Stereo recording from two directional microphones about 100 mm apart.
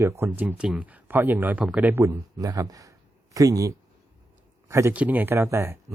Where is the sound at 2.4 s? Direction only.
40° right (ahead or behind).